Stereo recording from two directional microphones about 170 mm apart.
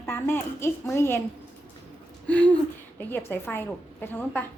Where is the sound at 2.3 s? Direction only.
10° left (ahead or behind).